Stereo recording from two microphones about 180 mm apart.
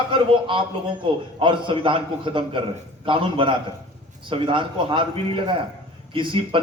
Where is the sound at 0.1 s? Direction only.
30° right (ahead or behind).